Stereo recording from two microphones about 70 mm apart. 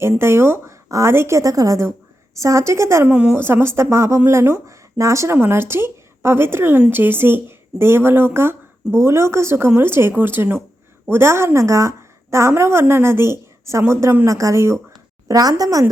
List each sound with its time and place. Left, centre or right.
0.0 s a woman's voice: right
3.1 s a woman's voice: centre
3.3 s a woman's voice: right
15.3 s a woman's voice: right